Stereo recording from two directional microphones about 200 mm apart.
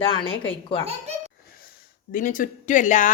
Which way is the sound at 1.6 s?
45° left (ahead or behind).